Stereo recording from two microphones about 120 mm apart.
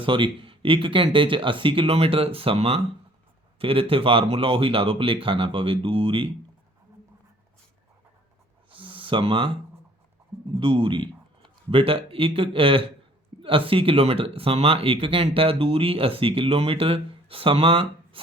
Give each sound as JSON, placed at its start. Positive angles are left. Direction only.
{"t": 0.0, "sound": "speech", "side_deg": -45}
{"t": 8.7, "sound": "a sound", "side_deg": -45}
{"t": 10.5, "sound": "a man's voice", "side_deg": -45}